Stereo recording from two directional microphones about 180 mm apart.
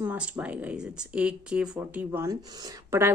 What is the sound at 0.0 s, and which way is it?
Speech, 10° right (ahead or behind).